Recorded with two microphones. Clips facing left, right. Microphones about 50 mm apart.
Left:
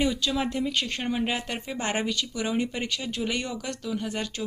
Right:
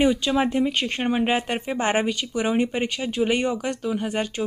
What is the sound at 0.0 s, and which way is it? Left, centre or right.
Speech, right.